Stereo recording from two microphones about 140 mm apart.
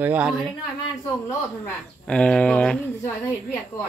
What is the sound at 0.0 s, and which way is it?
Speech, 10° right (ahead or behind).